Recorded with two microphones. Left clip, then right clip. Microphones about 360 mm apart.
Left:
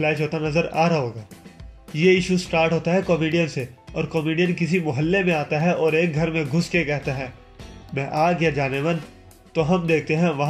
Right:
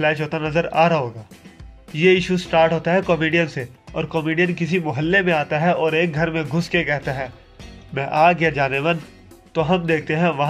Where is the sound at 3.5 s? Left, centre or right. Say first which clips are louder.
Right 1 dB; right.